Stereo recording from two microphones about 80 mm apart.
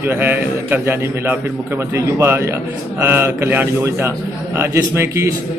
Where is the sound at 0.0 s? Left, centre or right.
Right.